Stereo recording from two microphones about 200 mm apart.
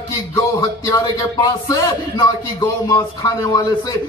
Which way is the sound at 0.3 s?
15° left (ahead or behind).